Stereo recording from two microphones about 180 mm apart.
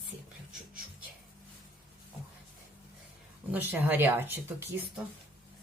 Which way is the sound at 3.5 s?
10° right (ahead or behind).